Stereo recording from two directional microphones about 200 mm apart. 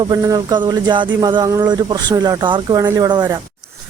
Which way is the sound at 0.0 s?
15° right (ahead or behind).